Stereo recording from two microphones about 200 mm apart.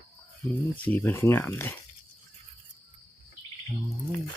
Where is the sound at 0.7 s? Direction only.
10° left (ahead or behind).